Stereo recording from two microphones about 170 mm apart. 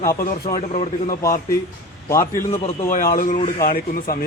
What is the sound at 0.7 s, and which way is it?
Speech, 40° left (ahead or behind).